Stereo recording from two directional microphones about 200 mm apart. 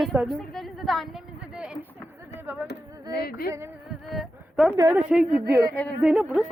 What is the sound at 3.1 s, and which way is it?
Speech, 50° left (ahead or behind).